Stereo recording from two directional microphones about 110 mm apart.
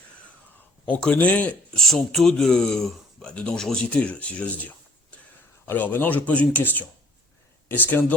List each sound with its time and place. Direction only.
0.9 s speech: 10° left (ahead or behind)